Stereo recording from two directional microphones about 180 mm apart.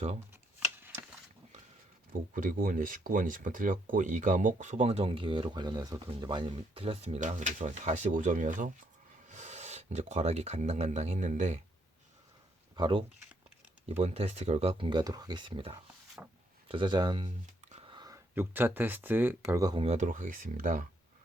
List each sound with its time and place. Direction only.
2.3 s speech: 45° right (ahead or behind)
12.7 s speech: 25° right (ahead or behind)
16.2 s speech: 10° right (ahead or behind)
16.6 s speech: 25° right (ahead or behind)
19.8 s speech: 40° right (ahead or behind)